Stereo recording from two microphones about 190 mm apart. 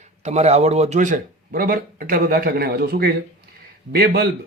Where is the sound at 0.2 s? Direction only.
35° right (ahead or behind).